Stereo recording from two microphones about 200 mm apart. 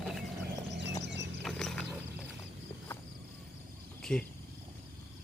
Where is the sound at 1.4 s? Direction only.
5° left (ahead or behind).